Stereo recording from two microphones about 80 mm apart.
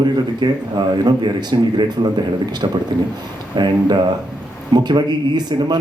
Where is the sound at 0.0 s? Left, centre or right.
Right.